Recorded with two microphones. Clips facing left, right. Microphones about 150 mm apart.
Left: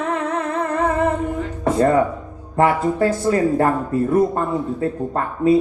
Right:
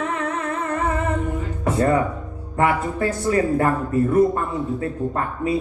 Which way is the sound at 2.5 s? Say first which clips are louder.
Left 4 dB; 30° left (ahead or behind).